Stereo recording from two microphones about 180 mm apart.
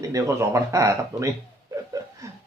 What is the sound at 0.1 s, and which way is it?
Speech, 15° right (ahead or behind).